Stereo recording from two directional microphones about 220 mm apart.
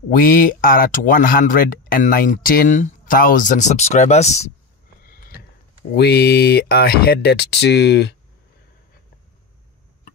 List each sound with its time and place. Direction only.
0.1 s speech: 40° left (ahead or behind)
5.0 s a sound: 40° left (ahead or behind)
5.9 s speech: 45° left (ahead or behind)